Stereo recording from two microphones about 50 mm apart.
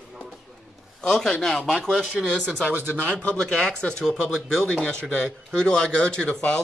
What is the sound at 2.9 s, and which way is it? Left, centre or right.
Speech, left.